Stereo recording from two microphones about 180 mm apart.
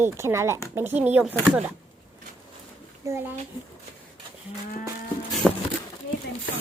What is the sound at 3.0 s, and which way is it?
Speech, 15° right (ahead or behind).